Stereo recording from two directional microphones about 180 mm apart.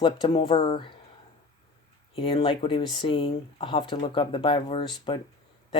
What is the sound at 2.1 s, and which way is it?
Speech, 30° left (ahead or behind).